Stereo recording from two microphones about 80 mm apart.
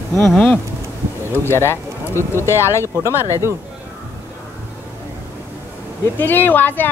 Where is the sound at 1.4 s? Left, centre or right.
Left.